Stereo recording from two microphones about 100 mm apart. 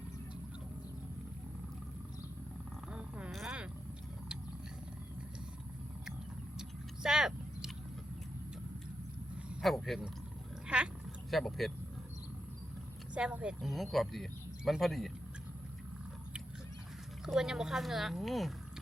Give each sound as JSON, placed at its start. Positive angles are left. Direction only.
{"t": 2.9, "sound": "a sound", "side_deg": -10}
{"t": 3.3, "sound": "vehicle", "side_deg": -5}
{"t": 6.6, "sound": "vehicle", "side_deg": -5}
{"t": 9.6, "sound": "speech", "side_deg": 5}
{"t": 11.3, "sound": "speech", "side_deg": 0}
{"t": 13.1, "sound": "speech", "side_deg": -10}
{"t": 13.6, "sound": "speech", "side_deg": 0}
{"t": 17.2, "sound": "speech", "side_deg": -5}